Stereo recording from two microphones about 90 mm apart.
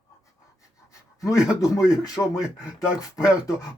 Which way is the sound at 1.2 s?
35° left (ahead or behind).